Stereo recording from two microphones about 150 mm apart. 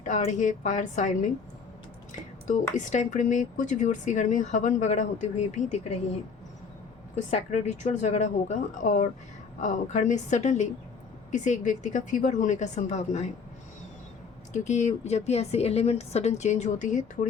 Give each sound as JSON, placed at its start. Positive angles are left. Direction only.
{"t": 0.0, "sound": "speech", "side_deg": 55}
{"t": 2.7, "sound": "speech", "side_deg": 55}
{"t": 7.2, "sound": "a woman's voice", "side_deg": 50}
{"t": 14.5, "sound": "a woman's voice", "side_deg": 55}